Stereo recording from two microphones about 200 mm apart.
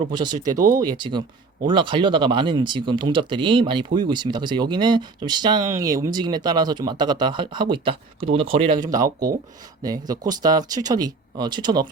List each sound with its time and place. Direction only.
0.1 s speech: 20° right (ahead or behind)
0.5 s speech: 40° right (ahead or behind)
0.8 s speech: 20° right (ahead or behind)
9.8 s speech: 20° right (ahead or behind)